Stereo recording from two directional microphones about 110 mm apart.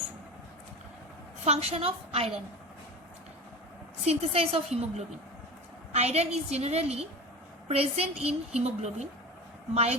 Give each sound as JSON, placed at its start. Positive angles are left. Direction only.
{"t": 1.5, "sound": "a woman's voice", "side_deg": -70}
{"t": 4.0, "sound": "a woman's voice", "side_deg": -70}
{"t": 5.9, "sound": "a woman's voice", "side_deg": -80}